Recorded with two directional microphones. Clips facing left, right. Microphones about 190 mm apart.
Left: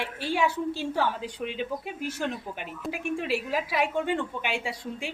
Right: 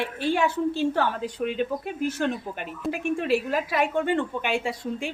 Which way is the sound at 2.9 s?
50° right (ahead or behind).